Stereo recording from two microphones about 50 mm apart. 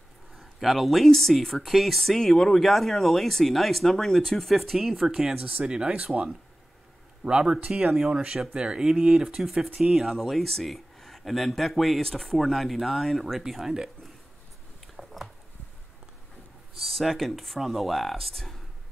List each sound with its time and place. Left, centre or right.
0.4 s speech: centre
5.4 s speech: right
7.2 s speech: right; by 13.7 s centre
15.0 s a sound: centre
16.8 s speech: centre